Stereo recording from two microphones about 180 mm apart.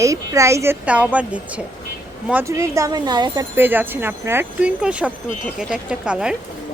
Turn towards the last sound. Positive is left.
turn(degrees=-5)  # may be behind; listen again after turning